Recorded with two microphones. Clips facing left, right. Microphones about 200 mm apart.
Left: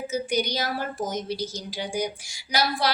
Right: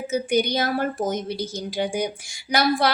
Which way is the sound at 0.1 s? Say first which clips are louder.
Right 6 dB; 55° right (ahead or behind).